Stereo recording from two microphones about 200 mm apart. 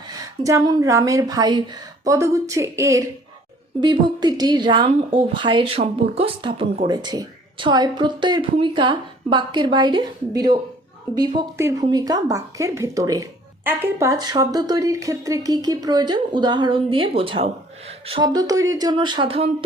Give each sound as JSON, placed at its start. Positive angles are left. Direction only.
{"t": 0.2, "sound": "speech", "side_deg": -15}